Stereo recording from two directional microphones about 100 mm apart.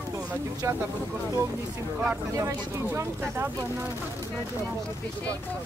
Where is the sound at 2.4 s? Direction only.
25° right (ahead or behind).